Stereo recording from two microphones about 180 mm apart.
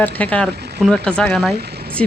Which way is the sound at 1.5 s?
60° right (ahead or behind).